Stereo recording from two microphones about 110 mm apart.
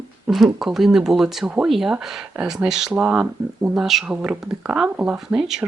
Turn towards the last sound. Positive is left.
turn(degrees=-10)  # may be behind; listen again after turning